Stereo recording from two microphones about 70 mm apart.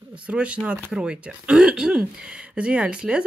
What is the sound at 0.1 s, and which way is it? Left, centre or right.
A woman's voice, centre.